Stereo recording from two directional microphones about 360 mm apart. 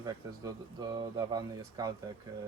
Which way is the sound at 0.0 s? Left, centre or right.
Centre.